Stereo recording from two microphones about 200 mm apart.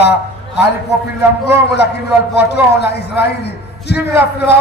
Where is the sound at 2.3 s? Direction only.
55° left (ahead or behind).